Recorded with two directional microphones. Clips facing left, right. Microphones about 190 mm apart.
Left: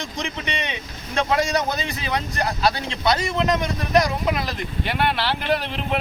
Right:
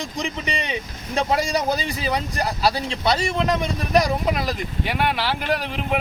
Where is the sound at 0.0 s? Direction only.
35° right (ahead or behind).